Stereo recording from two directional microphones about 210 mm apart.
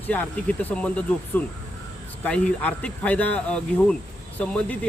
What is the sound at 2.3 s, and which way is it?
A man's voice, 5° left (ahead or behind).